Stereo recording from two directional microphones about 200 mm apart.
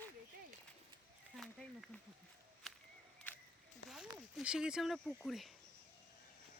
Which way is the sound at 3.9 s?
5° right (ahead or behind).